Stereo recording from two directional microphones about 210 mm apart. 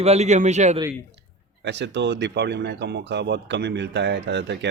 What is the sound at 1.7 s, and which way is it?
Speech, 55° right (ahead or behind).